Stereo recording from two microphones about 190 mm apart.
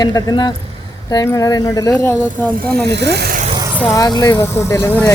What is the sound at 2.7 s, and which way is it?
Speech, 60° right (ahead or behind).